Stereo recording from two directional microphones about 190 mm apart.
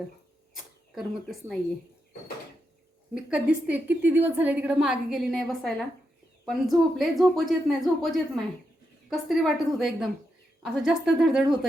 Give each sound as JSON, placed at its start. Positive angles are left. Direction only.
{"t": 0.5, "sound": "speech", "side_deg": 0}
{"t": 3.2, "sound": "a woman's voice", "side_deg": -5}